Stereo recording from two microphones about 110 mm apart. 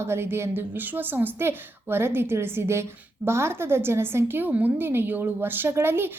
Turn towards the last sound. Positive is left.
turn(degrees=-20)  # may be behind; listen again after turning